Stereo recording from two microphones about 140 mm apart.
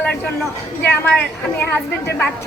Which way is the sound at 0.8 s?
10° left (ahead or behind).